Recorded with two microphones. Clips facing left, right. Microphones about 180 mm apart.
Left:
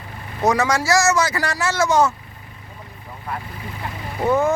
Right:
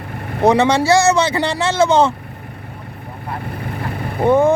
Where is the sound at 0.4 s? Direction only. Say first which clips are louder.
Right 6 dB; 30° right (ahead or behind).